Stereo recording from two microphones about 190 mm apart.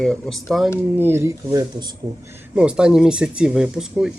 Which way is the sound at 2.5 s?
5° right (ahead or behind).